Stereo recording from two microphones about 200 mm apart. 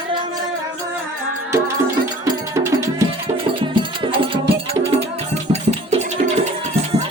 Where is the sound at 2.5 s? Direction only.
15° right (ahead or behind).